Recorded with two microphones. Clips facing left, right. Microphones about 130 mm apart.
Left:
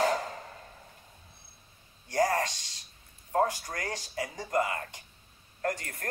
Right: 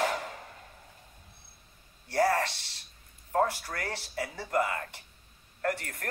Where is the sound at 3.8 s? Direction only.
15° left (ahead or behind).